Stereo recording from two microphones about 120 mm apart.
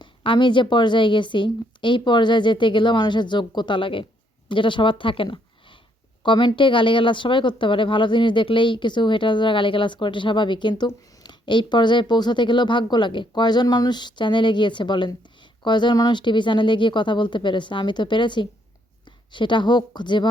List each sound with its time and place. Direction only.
0.0 s a woman's voice: 40° left (ahead or behind)